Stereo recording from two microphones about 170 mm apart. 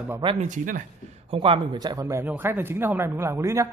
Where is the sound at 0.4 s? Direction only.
50° right (ahead or behind).